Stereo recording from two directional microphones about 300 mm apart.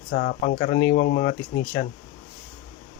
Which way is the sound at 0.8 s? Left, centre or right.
Left.